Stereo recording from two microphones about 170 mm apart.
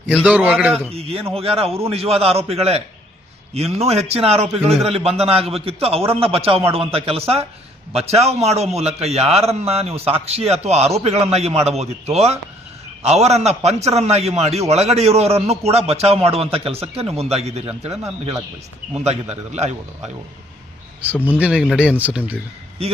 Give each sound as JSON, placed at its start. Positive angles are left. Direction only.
{"t": 0.1, "sound": "a man's voice", "side_deg": -5}
{"t": 0.9, "sound": "a man's voice", "side_deg": -35}
{"t": 4.4, "sound": "a man's voice", "side_deg": 0}
{"t": 4.8, "sound": "a man's voice", "side_deg": -35}
{"t": 18.9, "sound": "a man's voice", "side_deg": -40}
{"t": 21.3, "sound": "a man's voice", "side_deg": -5}